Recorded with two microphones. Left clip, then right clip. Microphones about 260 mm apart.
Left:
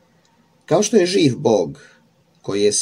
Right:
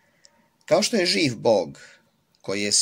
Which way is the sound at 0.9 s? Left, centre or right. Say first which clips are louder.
Left 7 dB; right.